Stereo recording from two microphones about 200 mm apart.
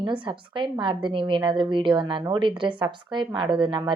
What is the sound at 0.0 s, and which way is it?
Speech, 25° right (ahead or behind).